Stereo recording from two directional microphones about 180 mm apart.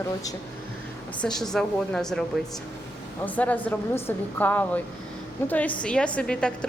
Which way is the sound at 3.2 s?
10° left (ahead or behind).